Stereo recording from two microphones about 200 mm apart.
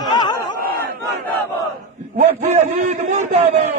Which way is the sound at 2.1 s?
35° right (ahead or behind).